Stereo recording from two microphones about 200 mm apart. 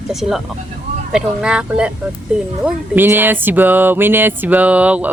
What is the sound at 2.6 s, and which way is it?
Music, 5° right (ahead or behind).